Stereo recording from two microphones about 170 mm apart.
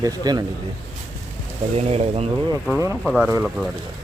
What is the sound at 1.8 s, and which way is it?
Speech, 35° right (ahead or behind).